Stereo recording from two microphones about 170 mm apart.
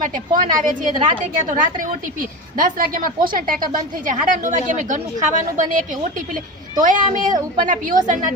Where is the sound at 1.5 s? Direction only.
50° right (ahead or behind).